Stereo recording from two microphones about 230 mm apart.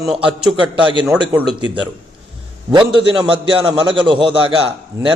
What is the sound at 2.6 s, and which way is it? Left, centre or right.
A man's voice, right.